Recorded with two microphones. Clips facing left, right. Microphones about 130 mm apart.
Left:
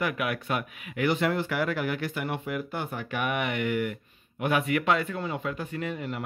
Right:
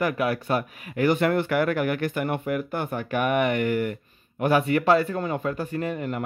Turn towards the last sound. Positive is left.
turn(degrees=-50)  # may be behind; listen again after turning